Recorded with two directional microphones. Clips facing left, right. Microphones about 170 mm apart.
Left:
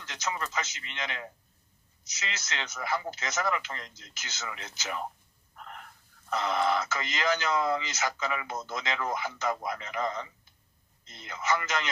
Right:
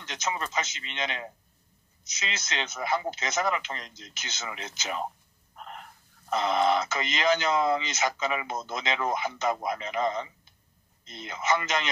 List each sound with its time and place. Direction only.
0.0 s speech: 20° right (ahead or behind)
5.6 s a sound: 20° right (ahead or behind)
6.3 s speech: 20° right (ahead or behind)